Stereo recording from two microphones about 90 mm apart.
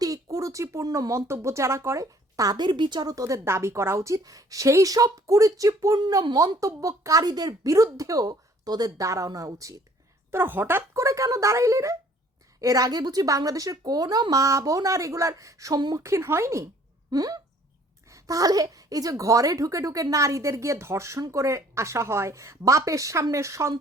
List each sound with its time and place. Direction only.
0.0 s speech: 40° right (ahead or behind)
2.6 s a woman's voice: 60° right (ahead or behind)
3.0 s speech: 40° right (ahead or behind)
10.3 s speech: 25° right (ahead or behind)
17.1 s hiccup: 45° right (ahead or behind)
18.1 s speech: 40° right (ahead or behind)